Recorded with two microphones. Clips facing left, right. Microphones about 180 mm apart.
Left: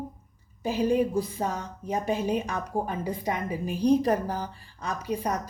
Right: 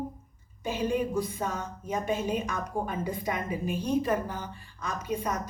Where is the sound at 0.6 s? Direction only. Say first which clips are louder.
Left 4 dB; 35° left (ahead or behind).